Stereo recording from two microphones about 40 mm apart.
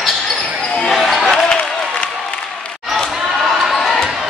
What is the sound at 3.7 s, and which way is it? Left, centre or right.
Crowd, centre.